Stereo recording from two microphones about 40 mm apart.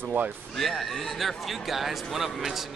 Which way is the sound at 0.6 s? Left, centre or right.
Centre.